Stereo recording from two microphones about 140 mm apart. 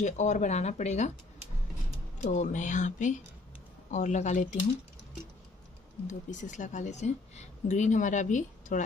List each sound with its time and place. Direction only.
0.0 s a woman's voice: 60° left (ahead or behind)
2.2 s a woman's voice: 60° left (ahead or behind)
6.0 s a woman's voice: 60° left (ahead or behind)